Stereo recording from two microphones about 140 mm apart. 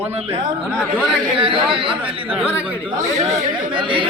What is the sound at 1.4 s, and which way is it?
Speech, 40° right (ahead or behind).